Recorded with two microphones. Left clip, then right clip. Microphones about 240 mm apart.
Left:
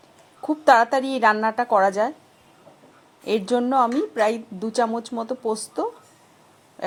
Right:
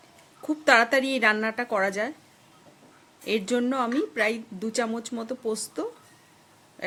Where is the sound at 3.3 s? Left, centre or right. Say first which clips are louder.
Left 4 dB; centre.